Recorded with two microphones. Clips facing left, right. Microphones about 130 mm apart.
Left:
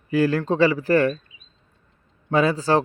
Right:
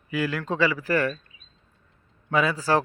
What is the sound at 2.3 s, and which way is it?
Speech, 30° left (ahead or behind).